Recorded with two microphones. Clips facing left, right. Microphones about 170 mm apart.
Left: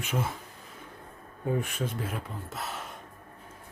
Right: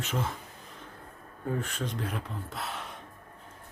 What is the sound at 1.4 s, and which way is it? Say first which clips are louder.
Speech: left 3 dB; 10° left (ahead or behind).